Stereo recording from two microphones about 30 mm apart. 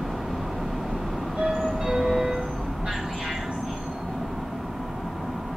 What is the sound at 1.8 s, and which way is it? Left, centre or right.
Music, right.